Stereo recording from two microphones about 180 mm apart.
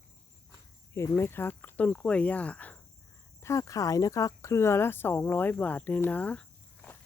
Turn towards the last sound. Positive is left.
turn(degrees=5)  # may be behind; listen again after turning